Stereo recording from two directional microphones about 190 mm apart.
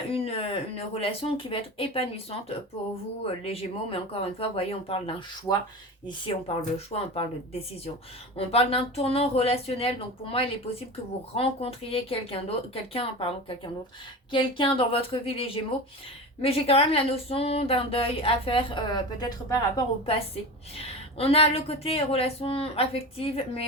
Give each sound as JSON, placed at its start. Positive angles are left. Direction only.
{"t": 0.1, "sound": "speech", "side_deg": 30}
{"t": 8.4, "sound": "speech", "side_deg": 30}